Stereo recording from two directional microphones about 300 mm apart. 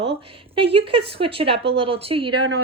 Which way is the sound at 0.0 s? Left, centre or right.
Centre.